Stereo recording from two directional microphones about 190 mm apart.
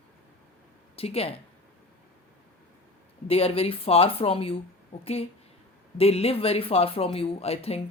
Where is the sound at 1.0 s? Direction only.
30° left (ahead or behind).